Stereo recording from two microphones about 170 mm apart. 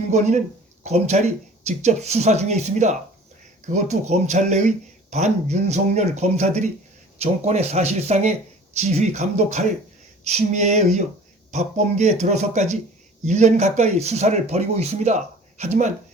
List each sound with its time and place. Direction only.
0.9 s speech: 40° right (ahead or behind)